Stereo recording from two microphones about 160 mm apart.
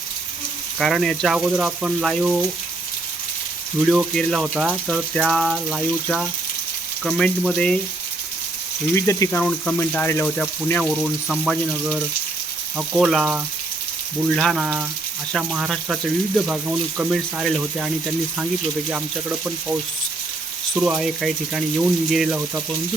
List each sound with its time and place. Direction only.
0.8 s speech: centre (ahead or behind)
3.8 s speech: centre (ahead or behind)
9.0 s speech: 20° left (ahead or behind); by 19.7 s 10° right (ahead or behind)
20.7 s speech: 5° right (ahead or behind)